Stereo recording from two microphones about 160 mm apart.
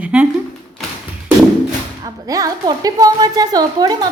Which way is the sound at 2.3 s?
20° right (ahead or behind).